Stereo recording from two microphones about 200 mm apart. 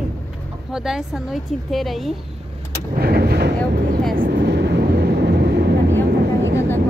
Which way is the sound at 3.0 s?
50° right (ahead or behind).